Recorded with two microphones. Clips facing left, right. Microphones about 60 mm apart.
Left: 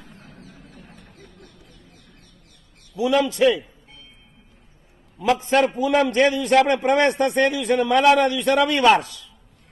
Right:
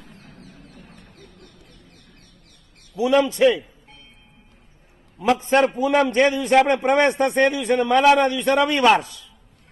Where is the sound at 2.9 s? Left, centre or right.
Centre.